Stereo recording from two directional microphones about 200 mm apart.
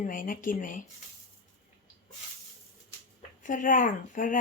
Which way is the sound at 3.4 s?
40° left (ahead or behind).